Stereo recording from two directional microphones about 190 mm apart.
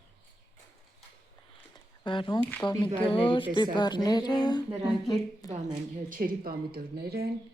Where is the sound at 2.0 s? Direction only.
25° left (ahead or behind).